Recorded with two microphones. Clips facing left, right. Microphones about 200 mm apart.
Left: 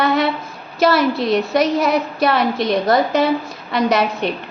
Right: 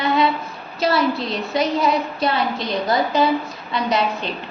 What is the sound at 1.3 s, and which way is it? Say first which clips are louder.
A woman's voice: left 5 dB; 75° left (ahead or behind).